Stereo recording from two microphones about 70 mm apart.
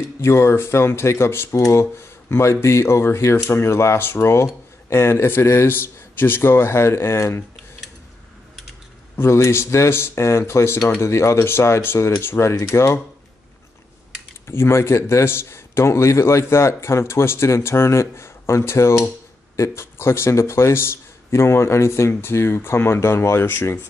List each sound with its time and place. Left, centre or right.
0.2 s a man's voice: left
9.1 s a man's voice: left
14.5 s a man's voice: left